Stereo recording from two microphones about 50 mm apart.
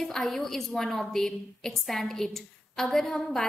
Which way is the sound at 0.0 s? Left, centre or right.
Centre.